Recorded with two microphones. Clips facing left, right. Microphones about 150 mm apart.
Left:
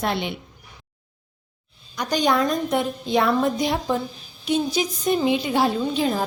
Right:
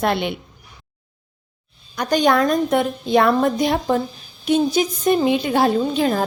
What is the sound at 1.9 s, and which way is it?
A woman's voice, 55° right (ahead or behind).